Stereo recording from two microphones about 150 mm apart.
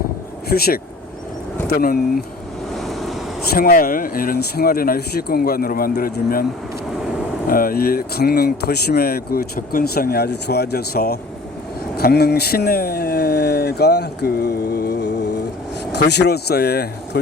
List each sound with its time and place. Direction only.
0.4 s speech: 90° left
2.7 s vehicle: centre (ahead or behind)
3.5 s speech: 70° left (ahead or behind)
7.4 s speech: 70° left (ahead or behind); by 16.9 s 90° left